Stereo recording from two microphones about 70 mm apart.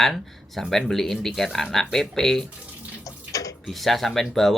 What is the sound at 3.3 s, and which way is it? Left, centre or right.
Tick-tock, left.